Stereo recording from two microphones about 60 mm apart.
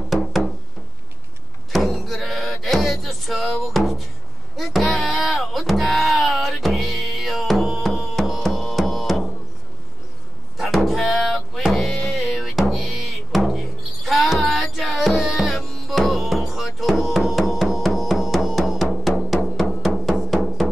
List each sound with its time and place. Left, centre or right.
0.1 s music: centre
1.7 s music: centre
10.6 s music: centre
12.3 s drum: centre
14.0 s music: centre